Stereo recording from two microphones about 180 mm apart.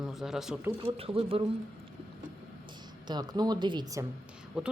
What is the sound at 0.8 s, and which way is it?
Speech, 30° right (ahead or behind).